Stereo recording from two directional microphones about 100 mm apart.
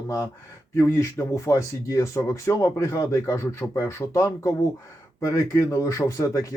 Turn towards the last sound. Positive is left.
turn(degrees=35)  # may be behind; listen again after turning